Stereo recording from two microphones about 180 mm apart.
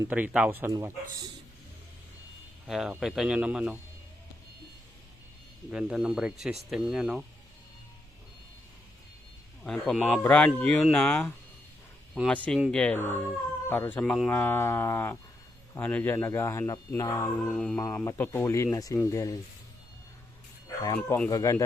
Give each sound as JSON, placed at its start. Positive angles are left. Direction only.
{"t": 0.1, "sound": "a man's voice", "side_deg": -5}
{"t": 2.6, "sound": "speech", "side_deg": -5}
{"t": 5.7, "sound": "speech", "side_deg": -5}
{"t": 9.6, "sound": "speech", "side_deg": 0}
{"t": 17.6, "sound": "speech", "side_deg": 5}
{"t": 20.8, "sound": "speech", "side_deg": 15}